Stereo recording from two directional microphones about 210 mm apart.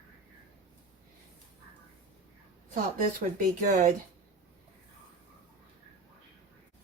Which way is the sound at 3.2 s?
40° right (ahead or behind).